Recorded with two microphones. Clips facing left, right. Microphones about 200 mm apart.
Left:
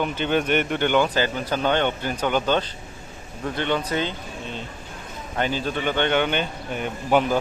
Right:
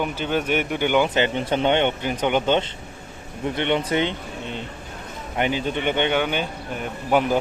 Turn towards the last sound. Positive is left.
turn(degrees=-5)  # may be behind; listen again after turning